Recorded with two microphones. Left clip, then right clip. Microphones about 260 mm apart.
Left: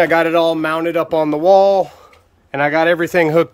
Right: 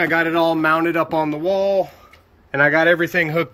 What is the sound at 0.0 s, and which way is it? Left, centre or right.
Speech, centre.